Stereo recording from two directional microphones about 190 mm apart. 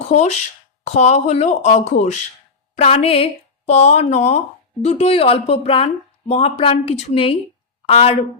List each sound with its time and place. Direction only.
0.1 s speech: 35° left (ahead or behind)